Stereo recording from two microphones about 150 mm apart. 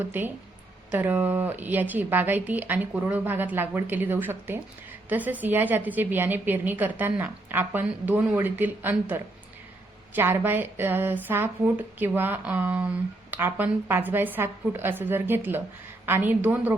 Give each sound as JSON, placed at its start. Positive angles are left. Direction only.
{"t": 0.0, "sound": "a woman's voice", "side_deg": -15}